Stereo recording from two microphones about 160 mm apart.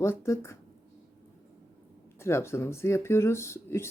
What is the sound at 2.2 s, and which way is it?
Speech, 15° left (ahead or behind).